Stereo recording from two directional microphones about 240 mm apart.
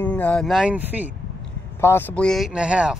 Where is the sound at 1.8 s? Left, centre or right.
Centre.